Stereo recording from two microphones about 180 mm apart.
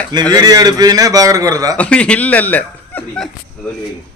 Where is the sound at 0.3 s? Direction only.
20° right (ahead or behind).